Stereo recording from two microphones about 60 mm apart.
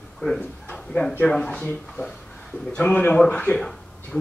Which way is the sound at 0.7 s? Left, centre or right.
Centre.